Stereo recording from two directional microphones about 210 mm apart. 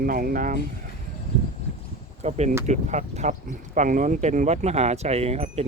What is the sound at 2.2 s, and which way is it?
Speech, 30° right (ahead or behind).